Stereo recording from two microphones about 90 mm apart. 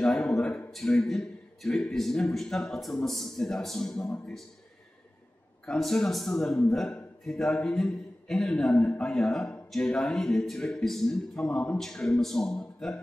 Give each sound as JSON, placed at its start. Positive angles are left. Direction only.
{"t": 0.0, "sound": "a man's voice", "side_deg": 5}
{"t": 5.7, "sound": "a man's voice", "side_deg": 5}